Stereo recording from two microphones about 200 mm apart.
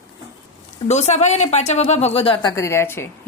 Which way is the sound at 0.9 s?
35° left (ahead or behind).